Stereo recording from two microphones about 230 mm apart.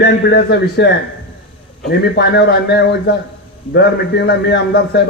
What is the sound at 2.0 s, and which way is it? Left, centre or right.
Speech, left.